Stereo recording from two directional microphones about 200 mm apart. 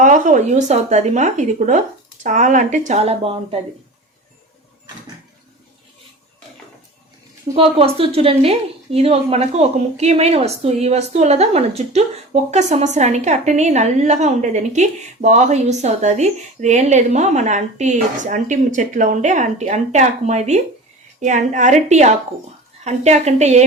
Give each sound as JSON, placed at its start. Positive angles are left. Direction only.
{"t": 0.0, "sound": "a woman's voice", "side_deg": -40}
{"t": 7.5, "sound": "a woman's voice", "side_deg": -30}